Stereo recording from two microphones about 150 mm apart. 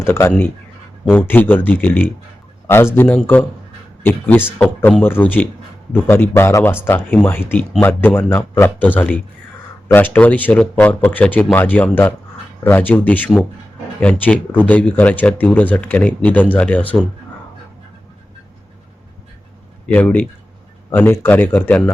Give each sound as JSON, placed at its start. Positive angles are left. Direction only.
{"t": 0.0, "sound": "speech", "side_deg": 15}
{"t": 19.9, "sound": "speech", "side_deg": 10}